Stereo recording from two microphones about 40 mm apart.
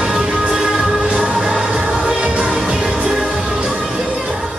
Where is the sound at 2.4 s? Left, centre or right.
Centre.